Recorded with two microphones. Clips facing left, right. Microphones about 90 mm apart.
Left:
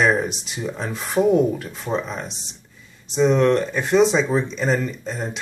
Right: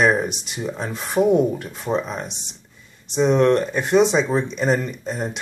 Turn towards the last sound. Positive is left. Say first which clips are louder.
# right 2 dB
turn(degrees=-10)  # may be behind; listen again after turning